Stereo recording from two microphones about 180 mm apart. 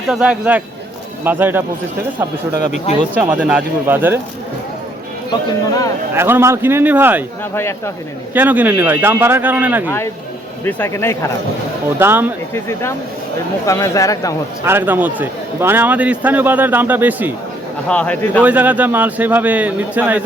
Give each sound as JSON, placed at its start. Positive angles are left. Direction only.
{"t": 0.1, "sound": "a man's voice", "side_deg": -5}
{"t": 3.2, "sound": "a man's voice", "side_deg": -5}
{"t": 6.1, "sound": "a man's voice", "side_deg": -15}
{"t": 8.3, "sound": "a man's voice", "side_deg": -10}
{"t": 10.7, "sound": "speech", "side_deg": 10}
{"t": 11.9, "sound": "a man's voice", "side_deg": -10}
{"t": 13.7, "sound": "speech", "side_deg": 15}
{"t": 14.6, "sound": "a man's voice", "side_deg": -10}
{"t": 17.8, "sound": "speech", "side_deg": 5}
{"t": 18.4, "sound": "a man's voice", "side_deg": -10}